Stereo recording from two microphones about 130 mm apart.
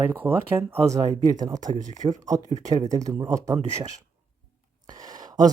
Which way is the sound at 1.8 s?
70° right (ahead or behind).